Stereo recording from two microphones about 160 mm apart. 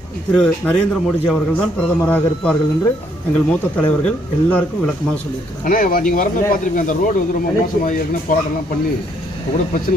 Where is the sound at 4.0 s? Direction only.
10° left (ahead or behind).